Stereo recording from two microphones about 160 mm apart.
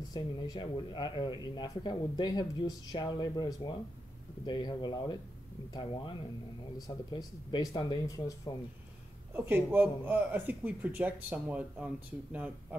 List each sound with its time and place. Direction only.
0.1 s speech: 25° left (ahead or behind)
9.3 s a man's voice: 15° right (ahead or behind)